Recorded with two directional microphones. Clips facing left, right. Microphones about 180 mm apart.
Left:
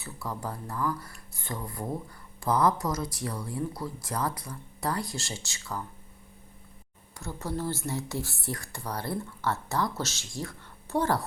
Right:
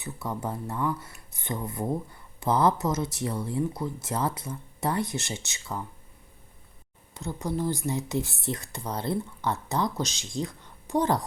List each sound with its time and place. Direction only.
0.0 s speech: 20° right (ahead or behind)
7.1 s speech: 20° right (ahead or behind)